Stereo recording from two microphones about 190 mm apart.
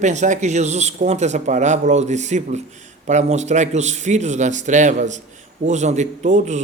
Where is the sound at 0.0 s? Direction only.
40° right (ahead or behind).